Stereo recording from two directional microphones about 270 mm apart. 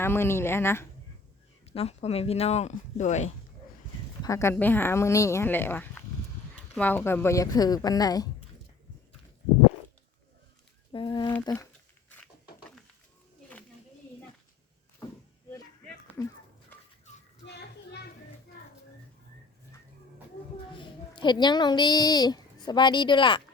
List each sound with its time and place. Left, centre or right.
0.0 s a woman's voice: centre
1.7 s speech: left
4.2 s a woman's voice: centre
10.9 s a woman's voice: centre
15.0 s a sound: centre
20.7 s speech: centre